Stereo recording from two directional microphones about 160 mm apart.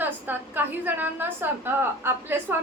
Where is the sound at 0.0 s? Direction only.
10° right (ahead or behind).